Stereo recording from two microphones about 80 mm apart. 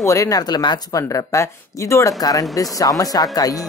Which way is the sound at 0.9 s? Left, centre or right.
Left.